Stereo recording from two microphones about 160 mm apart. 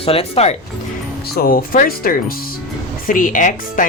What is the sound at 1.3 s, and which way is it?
Speech, 65° left (ahead or behind).